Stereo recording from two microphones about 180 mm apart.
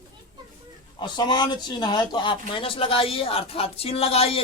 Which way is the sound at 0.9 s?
25° left (ahead or behind).